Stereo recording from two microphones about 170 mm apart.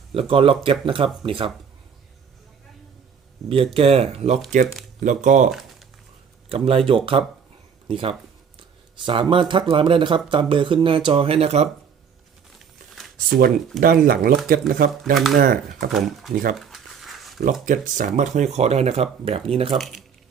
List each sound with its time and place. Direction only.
0.1 s speech: 30° right (ahead or behind)
3.5 s speech: 35° right (ahead or behind)
6.5 s speech: 35° right (ahead or behind)
13.8 s speech: 60° right (ahead or behind)
15.1 s speech: centre (ahead or behind)
15.4 s speech: 60° right (ahead or behind)
15.9 s speech: centre (ahead or behind)
16.3 s speech: 55° right (ahead or behind)
16.6 s a sound: centre (ahead or behind)
17.4 s speech: 50° right (ahead or behind); by 19.8 s 35° right (ahead or behind)
19.8 s speech: centre (ahead or behind)